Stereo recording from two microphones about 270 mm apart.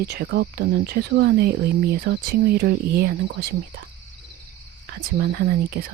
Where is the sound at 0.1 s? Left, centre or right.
Right.